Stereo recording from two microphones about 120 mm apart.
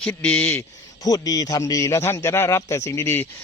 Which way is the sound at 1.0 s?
30° left (ahead or behind).